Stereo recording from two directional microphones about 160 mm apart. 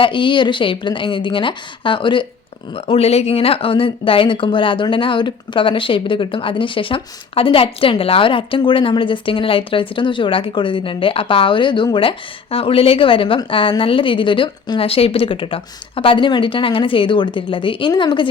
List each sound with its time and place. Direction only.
0.0 s speech: 30° left (ahead or behind)